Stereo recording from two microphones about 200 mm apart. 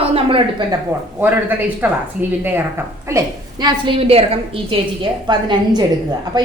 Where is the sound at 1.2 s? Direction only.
10° right (ahead or behind).